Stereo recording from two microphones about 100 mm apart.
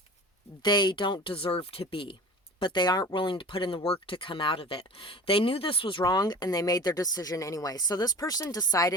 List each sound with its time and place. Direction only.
0.6 s speech: 45° left (ahead or behind); by 2.1 s 65° left (ahead or behind)
2.6 s speech: 50° left (ahead or behind)
6.1 s speech: 45° left (ahead or behind)